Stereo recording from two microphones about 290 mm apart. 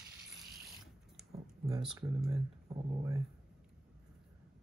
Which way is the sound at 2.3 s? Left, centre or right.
Centre.